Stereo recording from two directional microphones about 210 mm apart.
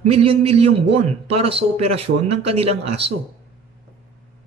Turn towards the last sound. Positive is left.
turn(degrees=-30)  # may be behind; listen again after turning